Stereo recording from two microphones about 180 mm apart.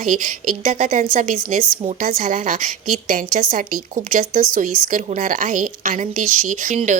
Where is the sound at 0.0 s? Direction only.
45° right (ahead or behind).